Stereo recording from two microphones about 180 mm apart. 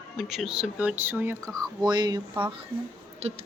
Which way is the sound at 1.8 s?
20° right (ahead or behind).